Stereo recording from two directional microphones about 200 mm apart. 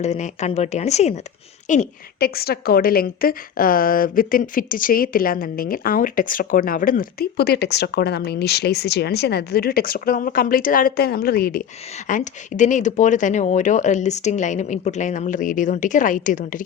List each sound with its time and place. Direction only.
0.0 s a woman's voice: 35° left (ahead or behind)
12.0 s speech: 40° left (ahead or behind)